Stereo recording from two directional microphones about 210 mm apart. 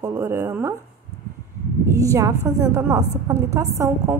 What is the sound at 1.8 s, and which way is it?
A woman's voice, 15° right (ahead or behind).